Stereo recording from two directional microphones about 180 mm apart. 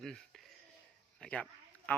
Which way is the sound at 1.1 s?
5° left (ahead or behind).